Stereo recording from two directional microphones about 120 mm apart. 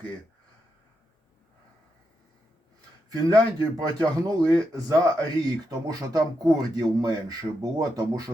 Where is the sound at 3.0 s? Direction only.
35° right (ahead or behind).